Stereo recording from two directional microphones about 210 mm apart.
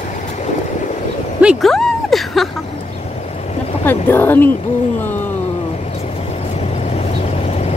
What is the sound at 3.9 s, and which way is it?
Speech, 10° left (ahead or behind).